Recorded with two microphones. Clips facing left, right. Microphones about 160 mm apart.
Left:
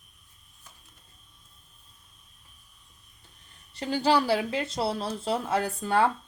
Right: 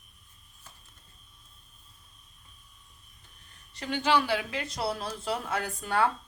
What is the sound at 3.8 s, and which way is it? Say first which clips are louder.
Speech: left 3 dB; 35° left (ahead or behind).